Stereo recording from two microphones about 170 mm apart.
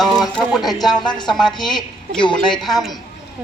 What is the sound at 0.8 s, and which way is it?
Speech, 25° left (ahead or behind).